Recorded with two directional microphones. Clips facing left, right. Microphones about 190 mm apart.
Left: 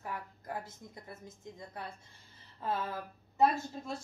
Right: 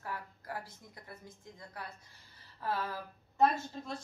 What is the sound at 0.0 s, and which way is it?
Speech, 20° left (ahead or behind).